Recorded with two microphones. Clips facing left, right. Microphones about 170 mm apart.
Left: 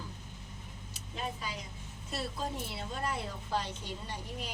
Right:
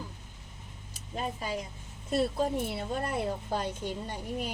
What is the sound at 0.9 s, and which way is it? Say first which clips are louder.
Speech: right 4 dB; 45° right (ahead or behind).